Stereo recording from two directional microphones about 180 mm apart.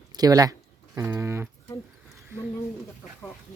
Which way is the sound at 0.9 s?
15° right (ahead or behind).